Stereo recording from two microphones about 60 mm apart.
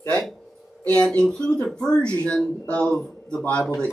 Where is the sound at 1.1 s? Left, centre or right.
Centre.